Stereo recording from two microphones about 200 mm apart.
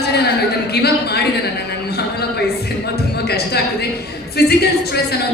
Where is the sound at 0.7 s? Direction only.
55° left (ahead or behind).